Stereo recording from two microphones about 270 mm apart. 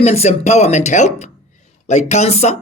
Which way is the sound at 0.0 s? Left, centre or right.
Left.